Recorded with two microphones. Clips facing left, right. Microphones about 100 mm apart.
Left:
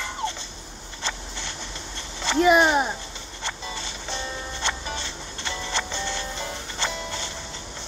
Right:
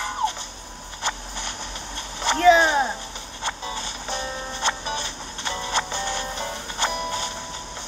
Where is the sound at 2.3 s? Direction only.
15° left (ahead or behind).